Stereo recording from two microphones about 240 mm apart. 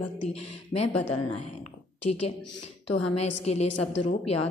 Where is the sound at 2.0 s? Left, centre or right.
Left.